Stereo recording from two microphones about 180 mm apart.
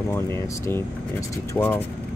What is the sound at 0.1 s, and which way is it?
Speech, 15° left (ahead or behind).